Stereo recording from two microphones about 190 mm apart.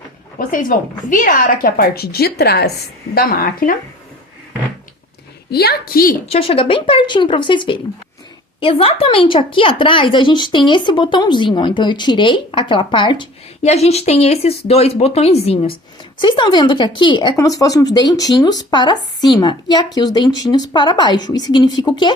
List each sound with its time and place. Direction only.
0.3 s a woman's voice: 45° left (ahead or behind)
5.5 s a woman's voice: 55° left (ahead or behind)
6.2 s speech: 30° left (ahead or behind)